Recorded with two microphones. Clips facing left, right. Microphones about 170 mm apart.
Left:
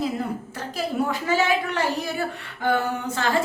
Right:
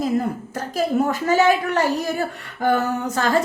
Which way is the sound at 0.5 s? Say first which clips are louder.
Right 7 dB; 45° right (ahead or behind).